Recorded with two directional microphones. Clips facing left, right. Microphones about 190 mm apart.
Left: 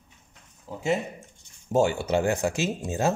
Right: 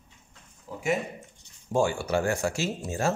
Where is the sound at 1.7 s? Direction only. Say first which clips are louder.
Left 3 dB; 20° left (ahead or behind).